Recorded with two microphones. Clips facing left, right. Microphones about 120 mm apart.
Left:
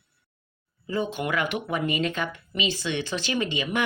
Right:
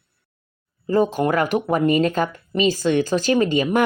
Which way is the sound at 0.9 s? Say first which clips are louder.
Right 9 dB; 40° right (ahead or behind).